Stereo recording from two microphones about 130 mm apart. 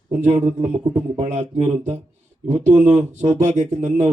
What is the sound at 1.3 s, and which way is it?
Speech, 65° right (ahead or behind).